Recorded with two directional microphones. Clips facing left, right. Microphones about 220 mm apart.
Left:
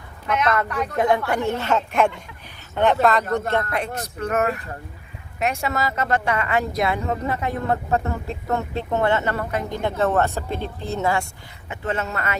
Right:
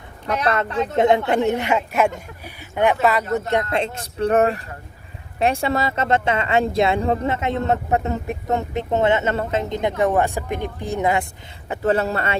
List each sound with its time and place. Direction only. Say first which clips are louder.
0.3 s speech: even; 35° right (ahead or behind); by 3.2 s 10° right (ahead or behind)
3.5 s speech: right 3 dB; 20° right (ahead or behind)
11.7 s speech: right 7 dB; 35° right (ahead or behind)